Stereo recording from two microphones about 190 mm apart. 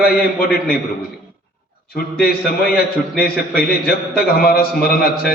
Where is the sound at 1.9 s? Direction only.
50° left (ahead or behind).